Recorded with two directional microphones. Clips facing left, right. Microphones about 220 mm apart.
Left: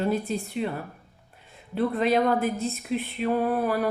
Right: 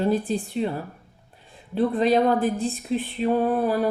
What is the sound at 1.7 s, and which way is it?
Speech, 30° right (ahead or behind).